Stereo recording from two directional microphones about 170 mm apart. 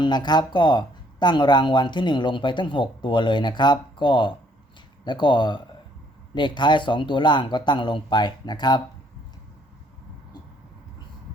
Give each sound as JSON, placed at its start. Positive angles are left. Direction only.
{"t": 0.0, "sound": "speech", "side_deg": 25}